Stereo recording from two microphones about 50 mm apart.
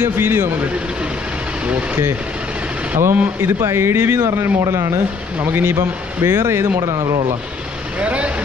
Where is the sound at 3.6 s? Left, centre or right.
Right.